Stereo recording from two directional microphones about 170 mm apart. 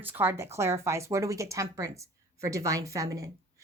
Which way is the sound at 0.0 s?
10° right (ahead or behind).